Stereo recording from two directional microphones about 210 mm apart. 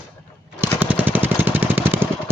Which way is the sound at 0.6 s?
10° right (ahead or behind).